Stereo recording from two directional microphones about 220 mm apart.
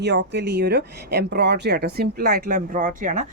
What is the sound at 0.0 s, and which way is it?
Speech, 50° right (ahead or behind).